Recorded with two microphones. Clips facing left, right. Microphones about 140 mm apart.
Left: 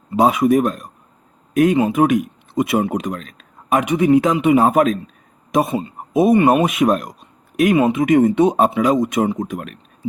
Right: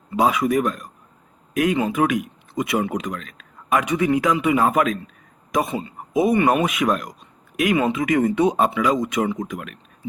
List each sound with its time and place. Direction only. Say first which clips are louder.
0.1 s speech: left 5 dB; 25° left (ahead or behind)